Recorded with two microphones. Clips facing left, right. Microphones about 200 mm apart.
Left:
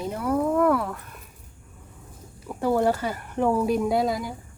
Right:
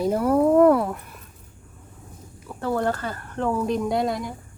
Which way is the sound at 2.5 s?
15° left (ahead or behind).